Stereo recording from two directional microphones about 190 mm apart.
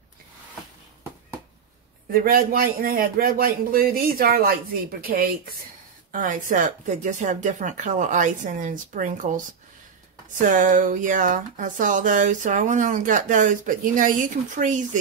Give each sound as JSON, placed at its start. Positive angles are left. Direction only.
{"t": 2.1, "sound": "speech", "side_deg": -50}
{"t": 10.4, "sound": "speech", "side_deg": -45}